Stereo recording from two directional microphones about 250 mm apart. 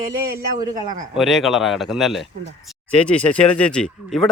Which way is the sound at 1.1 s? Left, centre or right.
Centre.